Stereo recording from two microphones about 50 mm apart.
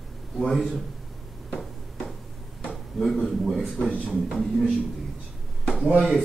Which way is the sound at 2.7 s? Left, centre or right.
Centre.